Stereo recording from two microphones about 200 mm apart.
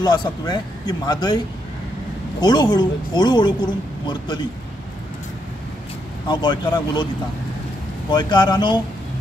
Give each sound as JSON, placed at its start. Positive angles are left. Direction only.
{"t": 0.0, "sound": "speech", "side_deg": 20}
{"t": 2.4, "sound": "speech", "side_deg": 20}
{"t": 6.2, "sound": "speech", "side_deg": 20}
{"t": 8.1, "sound": "speech", "side_deg": 20}